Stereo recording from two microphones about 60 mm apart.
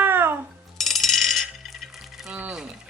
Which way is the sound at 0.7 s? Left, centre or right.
Centre.